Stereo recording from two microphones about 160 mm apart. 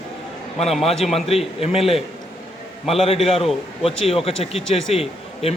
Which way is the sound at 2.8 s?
40° left (ahead or behind).